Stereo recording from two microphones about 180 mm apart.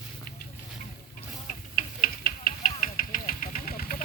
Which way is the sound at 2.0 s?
50° left (ahead or behind).